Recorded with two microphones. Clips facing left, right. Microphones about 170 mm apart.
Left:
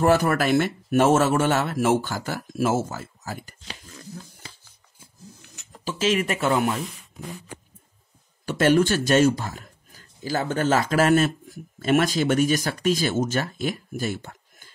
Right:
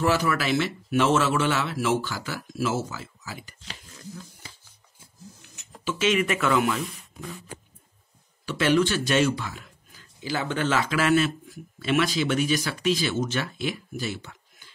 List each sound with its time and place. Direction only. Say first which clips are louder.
0.0 s speech: left 4 dB; 50° left (ahead or behind)
5.9 s speech: even; 35° left (ahead or behind)
8.5 s speech: left 3 dB; 45° left (ahead or behind)